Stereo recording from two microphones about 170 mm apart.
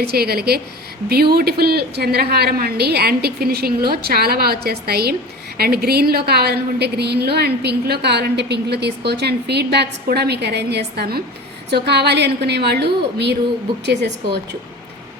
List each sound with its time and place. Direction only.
0.0 s a woman's voice: 65° right (ahead or behind)
11.7 s a woman's voice: 80° right